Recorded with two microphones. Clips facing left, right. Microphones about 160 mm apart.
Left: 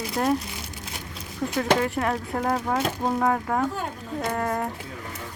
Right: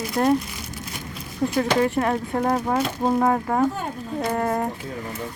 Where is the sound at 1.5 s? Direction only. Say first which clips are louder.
Right 2 dB; centre (ahead or behind).